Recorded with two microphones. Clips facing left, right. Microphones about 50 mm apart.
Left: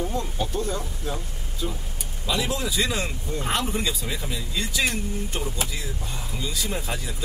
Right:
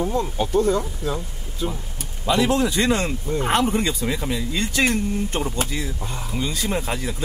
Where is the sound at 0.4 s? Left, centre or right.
Right.